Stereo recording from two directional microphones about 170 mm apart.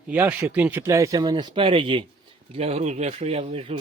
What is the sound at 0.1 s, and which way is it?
Speech, 10° right (ahead or behind).